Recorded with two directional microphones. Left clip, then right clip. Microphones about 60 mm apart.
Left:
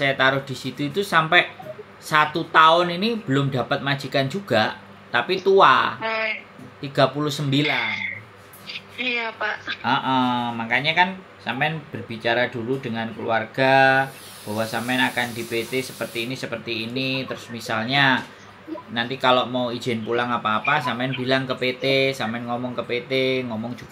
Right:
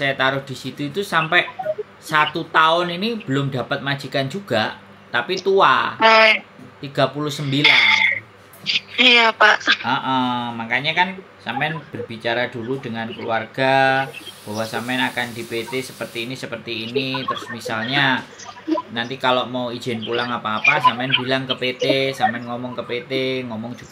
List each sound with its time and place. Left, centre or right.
0.0 s speech: centre
5.9 s speech: right
6.8 s speech: centre
7.6 s a sound: right
8.6 s a woman's voice: right
9.8 s speech: centre